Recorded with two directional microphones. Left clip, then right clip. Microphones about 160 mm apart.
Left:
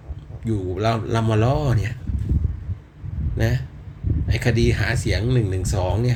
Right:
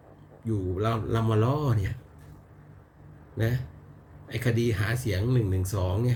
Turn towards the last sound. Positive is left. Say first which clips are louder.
# left 7 dB
turn(degrees=-15)  # may be behind; listen again after turning